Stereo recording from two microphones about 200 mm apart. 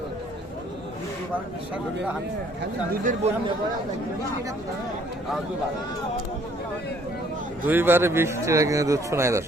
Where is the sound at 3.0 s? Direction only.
40° right (ahead or behind).